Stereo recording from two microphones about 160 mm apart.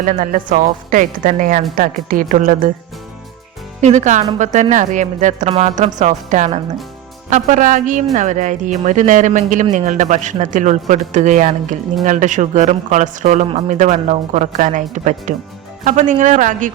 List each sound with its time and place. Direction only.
0.0 s a woman's voice: 55° right (ahead or behind)
3.8 s speech: 45° right (ahead or behind)